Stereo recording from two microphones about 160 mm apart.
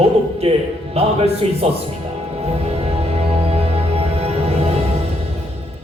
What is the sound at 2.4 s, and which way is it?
Music, 40° right (ahead or behind).